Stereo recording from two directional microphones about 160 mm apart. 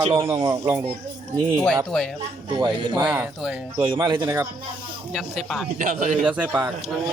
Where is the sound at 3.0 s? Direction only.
5° right (ahead or behind).